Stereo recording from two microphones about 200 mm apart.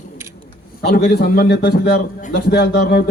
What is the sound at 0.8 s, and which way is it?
Speech, 50° left (ahead or behind).